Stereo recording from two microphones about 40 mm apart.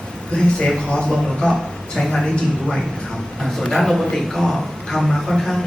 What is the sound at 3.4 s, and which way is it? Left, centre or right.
A man's voice, centre.